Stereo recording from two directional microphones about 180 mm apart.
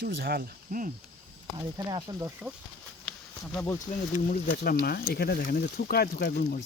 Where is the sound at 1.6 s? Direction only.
20° right (ahead or behind).